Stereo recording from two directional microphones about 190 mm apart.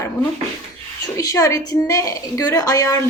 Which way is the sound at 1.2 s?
15° left (ahead or behind).